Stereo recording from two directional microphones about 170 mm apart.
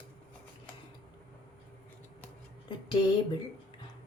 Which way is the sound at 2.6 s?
25° left (ahead or behind).